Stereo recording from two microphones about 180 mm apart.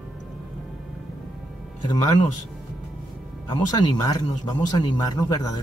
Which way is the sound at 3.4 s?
25° left (ahead or behind).